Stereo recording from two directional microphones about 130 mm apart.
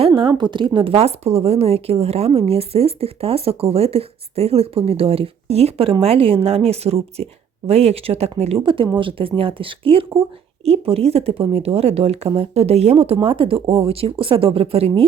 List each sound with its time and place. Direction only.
0.0 s a woman's voice: 40° right (ahead or behind)